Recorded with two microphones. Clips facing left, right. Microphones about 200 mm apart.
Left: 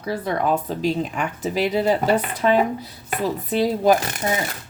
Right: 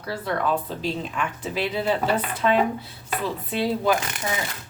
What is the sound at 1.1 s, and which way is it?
Speech, 40° left (ahead or behind).